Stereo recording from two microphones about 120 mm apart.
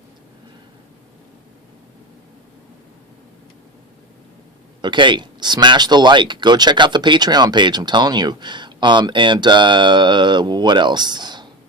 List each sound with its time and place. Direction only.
4.8 s speech: 40° right (ahead or behind)